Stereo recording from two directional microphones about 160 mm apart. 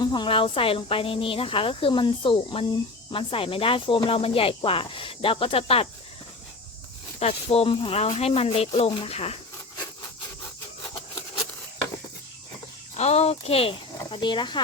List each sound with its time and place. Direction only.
0.0 s speech: 30° left (ahead or behind)
7.2 s speech: 40° left (ahead or behind)
13.0 s speech: 40° left (ahead or behind)